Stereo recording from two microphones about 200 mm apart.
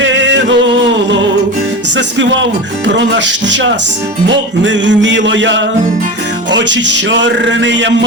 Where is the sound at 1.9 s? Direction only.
65° right (ahead or behind).